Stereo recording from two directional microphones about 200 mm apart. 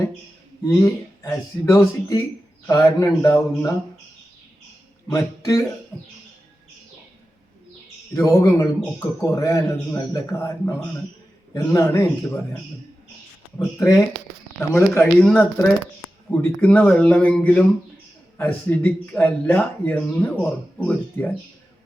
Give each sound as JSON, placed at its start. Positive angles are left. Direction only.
{"t": 0.8, "sound": "speech", "side_deg": 15}
{"t": 5.0, "sound": "speech", "side_deg": 15}
{"t": 8.1, "sound": "speech", "side_deg": 15}
{"t": 13.6, "sound": "speech", "side_deg": 15}